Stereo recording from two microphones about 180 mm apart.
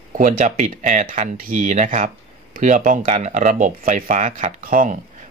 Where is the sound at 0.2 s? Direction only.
45° right (ahead or behind).